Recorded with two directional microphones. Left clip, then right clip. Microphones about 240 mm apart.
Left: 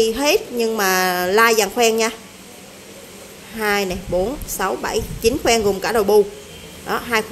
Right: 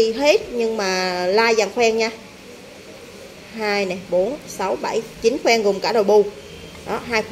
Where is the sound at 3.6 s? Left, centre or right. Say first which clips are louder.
Left 2 dB; centre.